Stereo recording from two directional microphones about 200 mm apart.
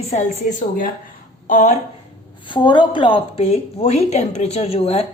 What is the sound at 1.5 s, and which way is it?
Speech, 40° left (ahead or behind).